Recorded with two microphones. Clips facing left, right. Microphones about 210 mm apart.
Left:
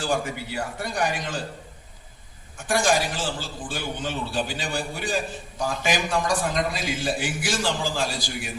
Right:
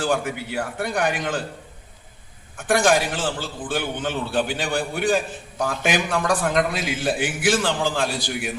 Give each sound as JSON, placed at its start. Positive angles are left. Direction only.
{"t": 0.0, "sound": "a man's voice", "side_deg": -55}
{"t": 2.6, "sound": "a man's voice", "side_deg": -55}